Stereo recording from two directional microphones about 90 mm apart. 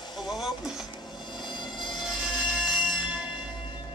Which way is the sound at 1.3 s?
55° left (ahead or behind).